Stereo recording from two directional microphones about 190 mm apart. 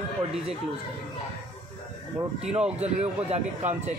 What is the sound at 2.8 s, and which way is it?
Speech, 35° right (ahead or behind).